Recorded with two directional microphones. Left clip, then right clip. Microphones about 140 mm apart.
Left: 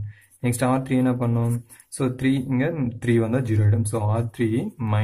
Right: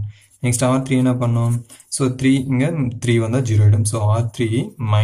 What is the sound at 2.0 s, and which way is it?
A man's voice, 30° left (ahead or behind).